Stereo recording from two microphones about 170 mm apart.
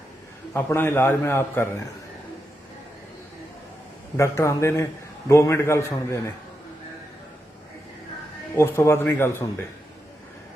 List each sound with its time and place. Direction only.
0.5 s a man's voice: 15° left (ahead or behind)
4.2 s a man's voice: 15° left (ahead or behind)
8.5 s a man's voice: 15° left (ahead or behind)